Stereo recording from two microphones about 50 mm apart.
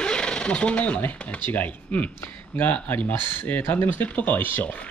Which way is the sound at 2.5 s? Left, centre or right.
Left.